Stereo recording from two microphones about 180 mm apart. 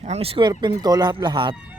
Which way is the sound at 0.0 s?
35° right (ahead or behind).